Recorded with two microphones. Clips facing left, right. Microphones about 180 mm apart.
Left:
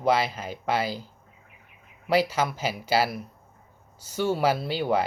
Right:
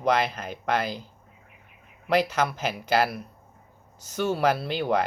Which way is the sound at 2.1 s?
10° left (ahead or behind).